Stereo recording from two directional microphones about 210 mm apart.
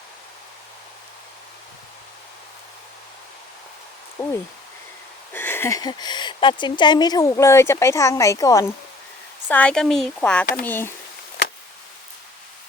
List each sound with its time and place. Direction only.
4.2 s speech: 20° left (ahead or behind)